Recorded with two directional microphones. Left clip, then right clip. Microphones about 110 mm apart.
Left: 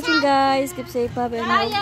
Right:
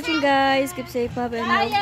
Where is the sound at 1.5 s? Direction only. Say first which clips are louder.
Even; centre (ahead or behind).